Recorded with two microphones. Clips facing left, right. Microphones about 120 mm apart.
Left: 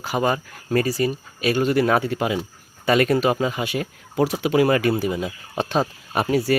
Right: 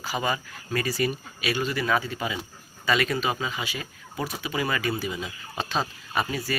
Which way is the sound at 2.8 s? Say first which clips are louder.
Left 7 dB; 50° left (ahead or behind).